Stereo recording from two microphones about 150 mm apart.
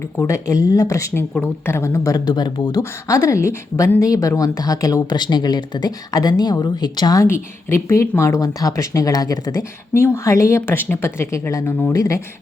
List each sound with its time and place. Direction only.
0.2 s speech: 20° left (ahead or behind)